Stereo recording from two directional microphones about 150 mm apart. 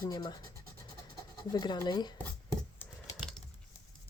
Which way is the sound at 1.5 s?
30° left (ahead or behind).